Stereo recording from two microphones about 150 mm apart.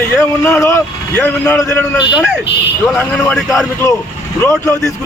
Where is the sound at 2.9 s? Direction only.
10° left (ahead or behind).